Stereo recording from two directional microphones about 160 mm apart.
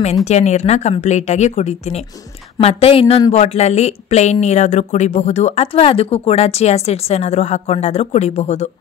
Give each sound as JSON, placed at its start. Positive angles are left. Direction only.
{"t": 0.0, "sound": "a woman's voice", "side_deg": 45}